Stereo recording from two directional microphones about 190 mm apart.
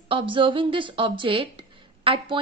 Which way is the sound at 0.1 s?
25° right (ahead or behind).